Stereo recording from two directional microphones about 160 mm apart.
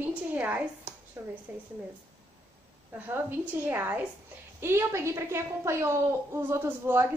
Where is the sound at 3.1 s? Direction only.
15° right (ahead or behind).